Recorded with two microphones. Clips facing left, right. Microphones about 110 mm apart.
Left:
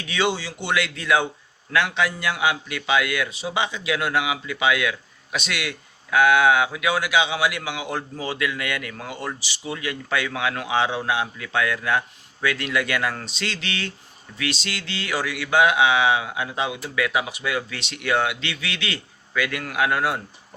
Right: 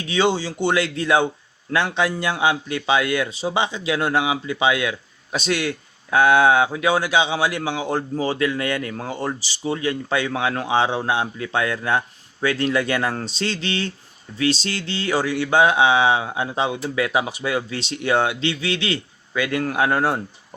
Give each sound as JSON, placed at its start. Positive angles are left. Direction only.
{"t": 0.0, "sound": "a man's voice", "side_deg": -30}